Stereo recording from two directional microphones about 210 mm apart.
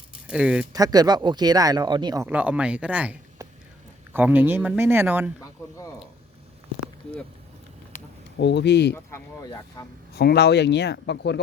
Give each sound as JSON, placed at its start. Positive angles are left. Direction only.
{"t": 0.3, "sound": "speech", "side_deg": -5}
{"t": 0.7, "sound": "speech", "side_deg": -20}
{"t": 8.4, "sound": "speech", "side_deg": 55}
{"t": 9.0, "sound": "speech", "side_deg": 15}
{"t": 10.2, "sound": "speech", "side_deg": 50}